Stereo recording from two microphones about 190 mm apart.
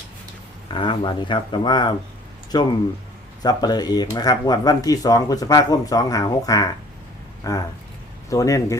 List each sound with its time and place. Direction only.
0.7 s speech: 25° left (ahead or behind)